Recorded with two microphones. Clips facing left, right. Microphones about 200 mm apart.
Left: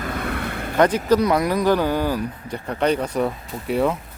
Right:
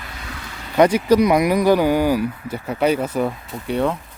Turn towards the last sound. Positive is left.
turn(degrees=0)  # may be behind; listen again after turning